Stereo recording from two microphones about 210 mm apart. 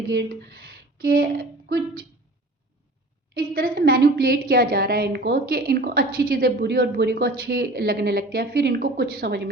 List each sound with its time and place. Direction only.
1.0 s a woman's voice: 45° right (ahead or behind)
3.3 s a woman's voice: 45° right (ahead or behind)